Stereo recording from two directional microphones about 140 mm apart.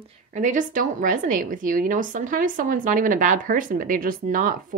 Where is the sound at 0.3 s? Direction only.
65° right (ahead or behind).